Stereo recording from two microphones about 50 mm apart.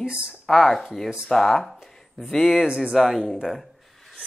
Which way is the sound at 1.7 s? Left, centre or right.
Centre.